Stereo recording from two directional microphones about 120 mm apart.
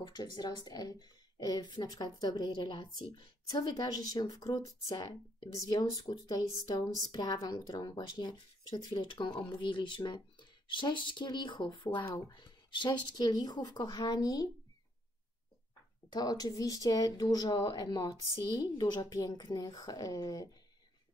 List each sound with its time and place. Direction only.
0.0 s a woman's voice: 40° left (ahead or behind)
16.1 s a woman's voice: 35° left (ahead or behind)